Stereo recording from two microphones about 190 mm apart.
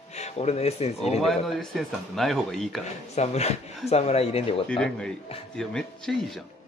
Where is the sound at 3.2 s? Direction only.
35° left (ahead or behind).